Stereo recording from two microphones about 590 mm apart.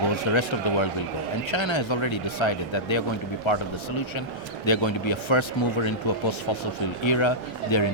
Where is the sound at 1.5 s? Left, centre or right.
Left.